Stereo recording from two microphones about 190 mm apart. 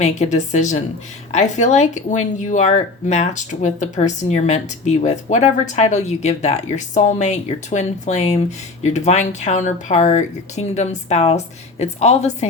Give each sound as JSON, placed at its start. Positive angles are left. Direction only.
{"t": 0.0, "sound": "speech", "side_deg": 35}